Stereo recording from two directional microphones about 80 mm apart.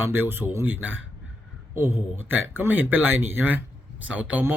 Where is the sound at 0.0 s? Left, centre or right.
Right.